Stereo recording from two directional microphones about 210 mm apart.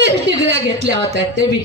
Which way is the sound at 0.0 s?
55° right (ahead or behind).